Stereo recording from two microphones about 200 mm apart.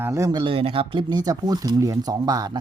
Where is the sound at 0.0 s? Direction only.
15° right (ahead or behind).